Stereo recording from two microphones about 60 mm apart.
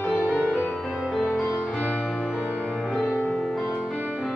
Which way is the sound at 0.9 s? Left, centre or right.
Centre.